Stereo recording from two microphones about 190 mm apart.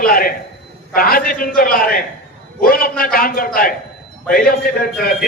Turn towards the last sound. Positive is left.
turn(degrees=50)  # may be behind; listen again after turning